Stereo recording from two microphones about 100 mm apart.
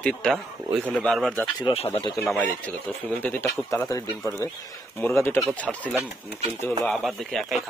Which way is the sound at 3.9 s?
30° left (ahead or behind).